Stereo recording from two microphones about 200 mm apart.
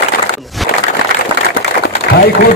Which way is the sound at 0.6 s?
Centre (ahead or behind).